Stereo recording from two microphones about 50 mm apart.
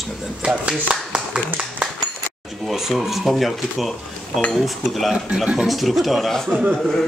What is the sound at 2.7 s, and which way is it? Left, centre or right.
A man's voice, centre.